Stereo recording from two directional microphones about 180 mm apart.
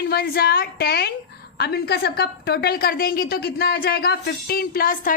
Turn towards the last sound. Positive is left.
turn(degrees=50)  # may be behind; listen again after turning